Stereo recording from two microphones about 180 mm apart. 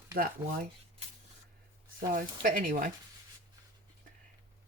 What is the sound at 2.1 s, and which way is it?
Speech, 50° right (ahead or behind).